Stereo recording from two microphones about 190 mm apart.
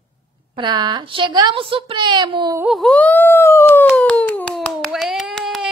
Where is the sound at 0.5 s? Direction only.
25° right (ahead or behind).